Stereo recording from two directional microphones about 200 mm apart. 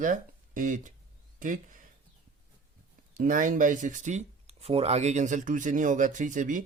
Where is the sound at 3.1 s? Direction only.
40° right (ahead or behind).